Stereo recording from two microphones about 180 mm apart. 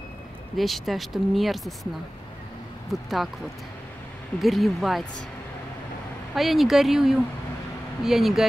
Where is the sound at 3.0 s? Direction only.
Centre (ahead or behind).